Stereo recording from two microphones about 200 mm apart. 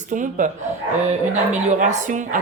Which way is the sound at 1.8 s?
40° right (ahead or behind).